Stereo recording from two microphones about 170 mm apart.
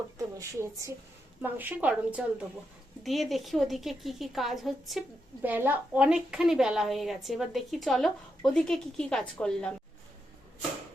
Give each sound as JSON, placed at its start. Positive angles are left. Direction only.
{"t": 0.3, "sound": "a woman's voice", "side_deg": -15}